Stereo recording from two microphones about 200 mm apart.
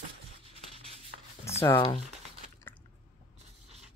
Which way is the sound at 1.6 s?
20° left (ahead or behind).